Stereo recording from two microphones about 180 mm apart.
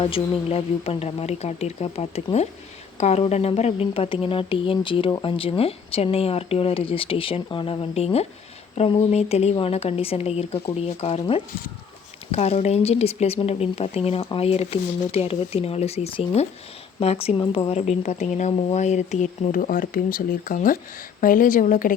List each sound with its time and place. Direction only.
0.0 s speech: 30° left (ahead or behind); by 21.9 s 50° left (ahead or behind)